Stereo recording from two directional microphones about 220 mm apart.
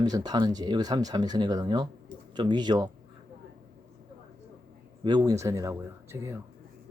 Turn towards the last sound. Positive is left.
turn(degrees=-10)  # may be behind; listen again after turning